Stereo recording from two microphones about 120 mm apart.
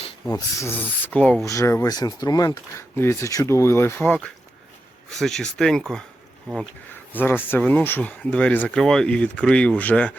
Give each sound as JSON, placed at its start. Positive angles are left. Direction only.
{"t": 0.7, "sound": "speech", "side_deg": 15}
{"t": 1.5, "sound": "speech", "side_deg": 25}
{"t": 2.9, "sound": "speech", "side_deg": 20}
{"t": 5.1, "sound": "speech", "side_deg": 5}
{"t": 7.1, "sound": "speech", "side_deg": 15}